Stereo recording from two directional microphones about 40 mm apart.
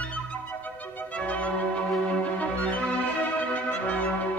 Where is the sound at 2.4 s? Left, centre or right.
Left.